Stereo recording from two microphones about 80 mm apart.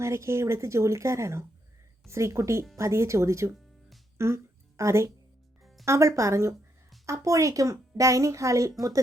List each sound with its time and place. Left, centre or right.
0.0 s a woman's voice: right